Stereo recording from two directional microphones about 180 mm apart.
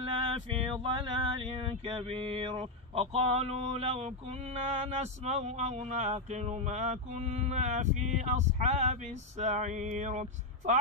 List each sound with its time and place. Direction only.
0.0 s male singing: 30° right (ahead or behind)
1.6 s speech: 30° right (ahead or behind)